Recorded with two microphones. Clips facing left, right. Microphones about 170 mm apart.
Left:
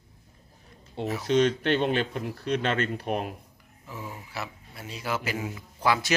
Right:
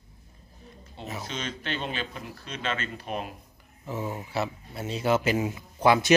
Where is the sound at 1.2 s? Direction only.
70° left (ahead or behind).